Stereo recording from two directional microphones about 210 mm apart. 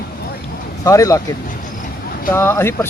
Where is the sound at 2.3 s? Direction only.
10° left (ahead or behind).